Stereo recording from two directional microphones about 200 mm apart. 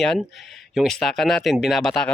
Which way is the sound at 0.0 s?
Centre (ahead or behind).